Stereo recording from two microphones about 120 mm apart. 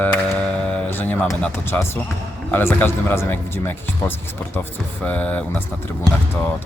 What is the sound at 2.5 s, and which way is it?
Speech, 20° left (ahead or behind).